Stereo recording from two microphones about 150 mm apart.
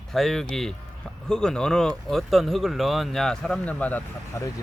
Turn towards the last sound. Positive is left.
turn(degrees=10)  # may be behind; listen again after turning